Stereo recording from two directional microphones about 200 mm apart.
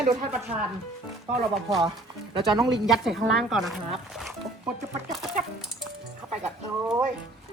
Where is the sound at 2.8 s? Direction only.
Centre (ahead or behind).